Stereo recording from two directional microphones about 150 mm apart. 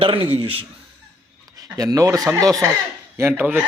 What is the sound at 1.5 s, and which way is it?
Speech, 25° right (ahead or behind).